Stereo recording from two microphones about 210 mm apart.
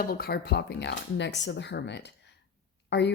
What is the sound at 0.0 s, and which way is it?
Speech, 45° left (ahead or behind).